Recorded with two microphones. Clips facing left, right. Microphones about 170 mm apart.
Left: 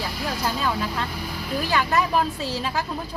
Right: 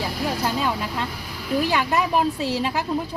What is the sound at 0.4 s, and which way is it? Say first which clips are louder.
Speech: left 2 dB; 15° right (ahead or behind).